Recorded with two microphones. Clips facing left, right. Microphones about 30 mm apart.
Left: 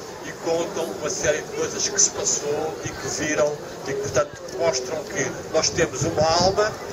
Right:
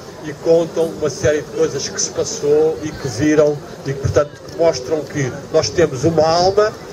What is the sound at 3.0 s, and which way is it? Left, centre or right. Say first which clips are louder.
A man's voice: right 9 dB; right.